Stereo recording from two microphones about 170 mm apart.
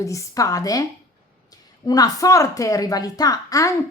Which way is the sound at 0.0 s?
20° left (ahead or behind).